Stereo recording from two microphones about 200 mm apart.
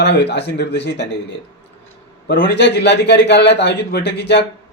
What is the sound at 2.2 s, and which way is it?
A man's voice, 50° left (ahead or behind).